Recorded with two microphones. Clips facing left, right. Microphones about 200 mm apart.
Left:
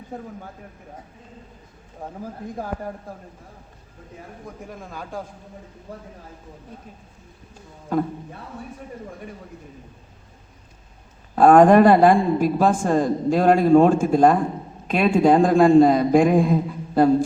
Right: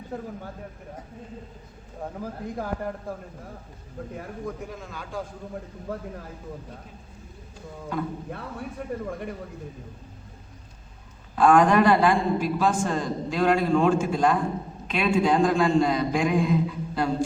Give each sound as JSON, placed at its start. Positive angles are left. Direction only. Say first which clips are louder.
{"t": 4.8, "sound": "a man's voice", "louder": "left 3 dB", "side_deg": 45}
{"t": 11.3, "sound": "a man's voice", "louder": "left 6 dB", "side_deg": 45}